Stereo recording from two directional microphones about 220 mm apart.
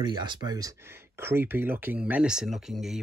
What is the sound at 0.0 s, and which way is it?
Speech, 20° right (ahead or behind).